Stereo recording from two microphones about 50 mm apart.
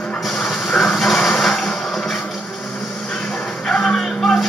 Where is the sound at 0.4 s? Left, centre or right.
Centre.